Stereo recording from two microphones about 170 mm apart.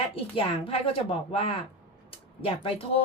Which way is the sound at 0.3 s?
35° left (ahead or behind).